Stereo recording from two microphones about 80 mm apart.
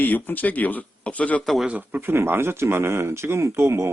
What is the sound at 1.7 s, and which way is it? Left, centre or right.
Speech, right.